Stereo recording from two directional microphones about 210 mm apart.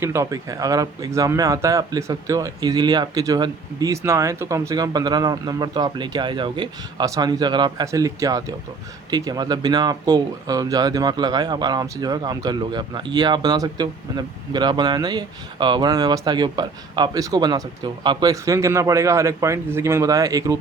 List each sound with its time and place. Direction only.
0.0 s speech: 10° right (ahead or behind)